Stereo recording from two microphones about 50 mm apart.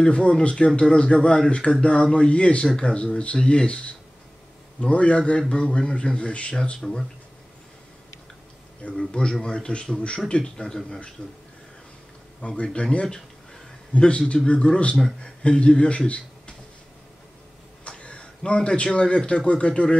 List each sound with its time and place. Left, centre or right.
0.0 s speech: centre
6.8 s a man's voice: centre
9.1 s a man's voice: centre
11.2 s speech: left
12.4 s a man's voice: left
17.8 s a sound: left
18.9 s speech: left